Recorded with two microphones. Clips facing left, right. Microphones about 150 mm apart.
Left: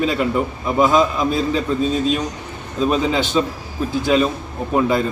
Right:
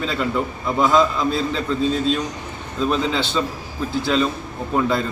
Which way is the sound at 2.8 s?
15° left (ahead or behind).